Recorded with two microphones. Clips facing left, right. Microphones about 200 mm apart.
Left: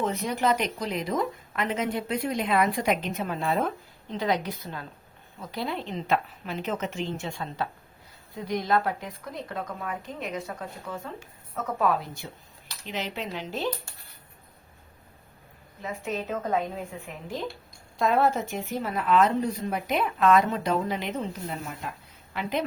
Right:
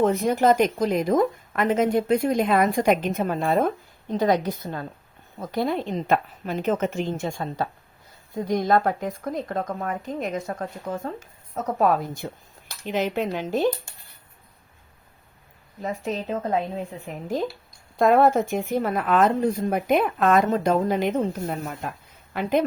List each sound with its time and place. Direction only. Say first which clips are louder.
0.0 s speech: right 7 dB; 50° right (ahead or behind)
15.8 s a woman's voice: right 4 dB; 40° right (ahead or behind)
17.3 s speech: right 7 dB; 45° right (ahead or behind)